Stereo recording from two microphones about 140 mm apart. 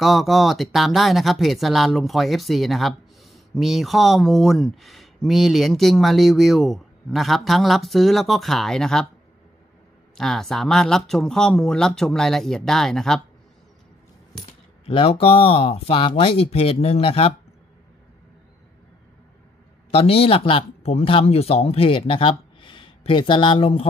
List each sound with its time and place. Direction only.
0.0 s speech: centre (ahead or behind)
10.1 s speech: 5° left (ahead or behind)
14.3 s coin: 5° left (ahead or behind)
14.9 s speech: 40° left (ahead or behind)
19.9 s speech: 45° left (ahead or behind)